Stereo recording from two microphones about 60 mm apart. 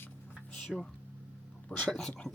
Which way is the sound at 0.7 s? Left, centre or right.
Centre.